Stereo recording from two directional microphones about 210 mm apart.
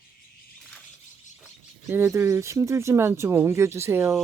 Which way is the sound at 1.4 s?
5° right (ahead or behind).